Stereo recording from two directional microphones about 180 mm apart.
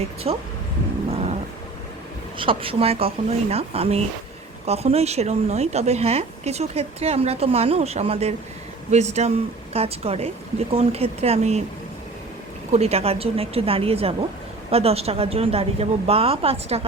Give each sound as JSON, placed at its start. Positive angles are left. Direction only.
{"t": 0.3, "sound": "speech", "side_deg": -35}
{"t": 2.4, "sound": "speech", "side_deg": -30}
{"t": 12.7, "sound": "speech", "side_deg": -35}